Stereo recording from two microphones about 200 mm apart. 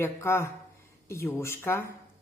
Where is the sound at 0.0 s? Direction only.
15° left (ahead or behind).